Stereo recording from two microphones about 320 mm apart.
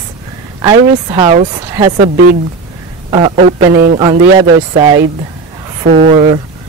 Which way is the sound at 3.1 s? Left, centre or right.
Centre.